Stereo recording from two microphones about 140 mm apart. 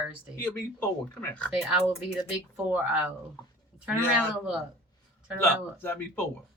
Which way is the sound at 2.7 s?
5° right (ahead or behind).